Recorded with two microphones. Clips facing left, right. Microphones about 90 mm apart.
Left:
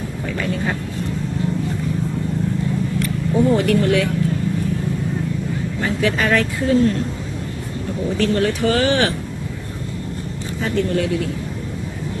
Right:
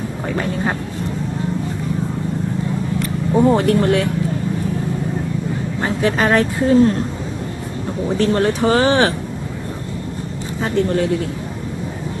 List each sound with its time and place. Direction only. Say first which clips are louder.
0.3 s vehicle: right 2 dB; 35° right (ahead or behind)
3.3 s speech: right 2 dB; 35° right (ahead or behind)
5.8 s speech: right 2 dB; 35° right (ahead or behind)
8.2 s speech: right 2 dB; 30° right (ahead or behind)
10.6 s speech: right 2 dB; 35° right (ahead or behind)